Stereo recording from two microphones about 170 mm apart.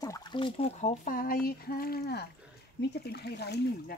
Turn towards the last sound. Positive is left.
turn(degrees=70)  # may be behind; listen again after turning